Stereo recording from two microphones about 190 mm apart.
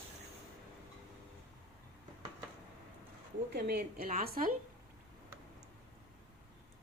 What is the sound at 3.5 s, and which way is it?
A woman's voice, 55° right (ahead or behind).